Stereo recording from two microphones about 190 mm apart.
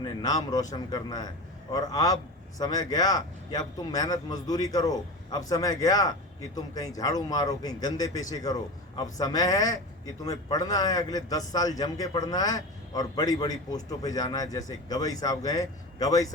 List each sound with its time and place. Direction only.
0.0 s a man's voice: 20° left (ahead or behind)